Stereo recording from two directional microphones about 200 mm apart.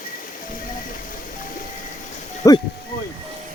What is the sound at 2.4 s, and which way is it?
Speech, 15° left (ahead or behind).